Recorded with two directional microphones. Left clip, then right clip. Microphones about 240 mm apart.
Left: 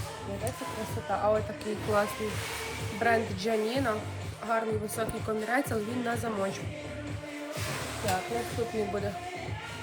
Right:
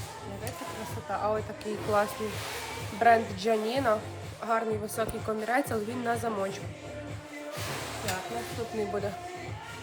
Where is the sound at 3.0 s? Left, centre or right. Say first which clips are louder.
Right 5 dB; centre.